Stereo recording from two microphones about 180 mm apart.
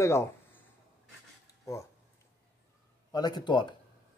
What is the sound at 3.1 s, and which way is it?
Speech, 25° left (ahead or behind).